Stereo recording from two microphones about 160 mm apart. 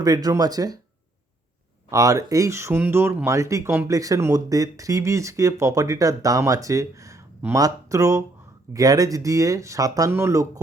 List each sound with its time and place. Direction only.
0.0 s speech: 20° right (ahead or behind)
1.9 s speech: 20° right (ahead or behind)